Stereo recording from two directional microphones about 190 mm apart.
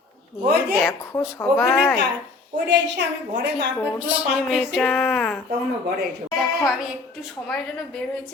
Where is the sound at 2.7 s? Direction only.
65° right (ahead or behind).